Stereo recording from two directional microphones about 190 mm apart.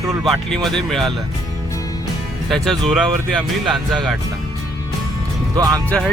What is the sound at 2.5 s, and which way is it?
Speech, centre (ahead or behind).